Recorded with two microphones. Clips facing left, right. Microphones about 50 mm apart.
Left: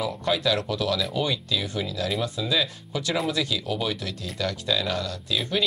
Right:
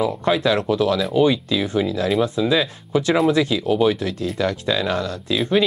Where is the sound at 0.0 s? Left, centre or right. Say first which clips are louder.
Right 6 dB; right.